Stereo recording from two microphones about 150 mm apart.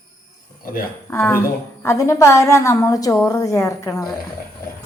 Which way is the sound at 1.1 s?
15° left (ahead or behind).